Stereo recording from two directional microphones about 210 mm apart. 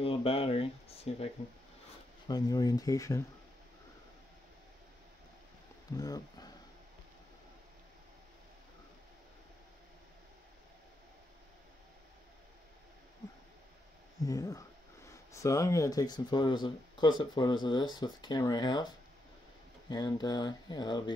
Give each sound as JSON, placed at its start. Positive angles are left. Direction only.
{"t": 0.0, "sound": "speech", "side_deg": 25}
{"t": 2.2, "sound": "speech", "side_deg": 20}
{"t": 5.9, "sound": "speech", "side_deg": 15}
{"t": 14.2, "sound": "speech", "side_deg": 15}
{"t": 19.9, "sound": "speech", "side_deg": 20}